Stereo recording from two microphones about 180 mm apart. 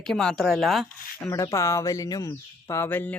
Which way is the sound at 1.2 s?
15° left (ahead or behind).